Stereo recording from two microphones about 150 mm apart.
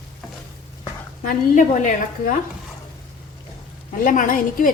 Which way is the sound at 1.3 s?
60° left (ahead or behind).